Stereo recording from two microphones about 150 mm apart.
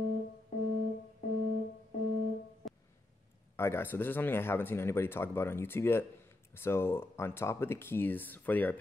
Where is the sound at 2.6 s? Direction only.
Centre (ahead or behind).